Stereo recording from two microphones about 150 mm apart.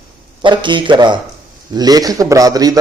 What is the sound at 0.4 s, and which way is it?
Speech, 30° right (ahead or behind).